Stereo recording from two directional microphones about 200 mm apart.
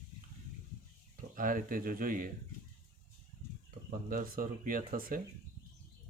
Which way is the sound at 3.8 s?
45° right (ahead or behind).